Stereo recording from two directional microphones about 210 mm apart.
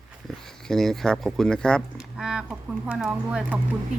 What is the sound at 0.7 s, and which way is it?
Speech, centre (ahead or behind).